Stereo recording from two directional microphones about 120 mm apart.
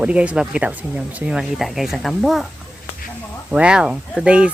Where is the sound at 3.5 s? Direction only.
5° right (ahead or behind).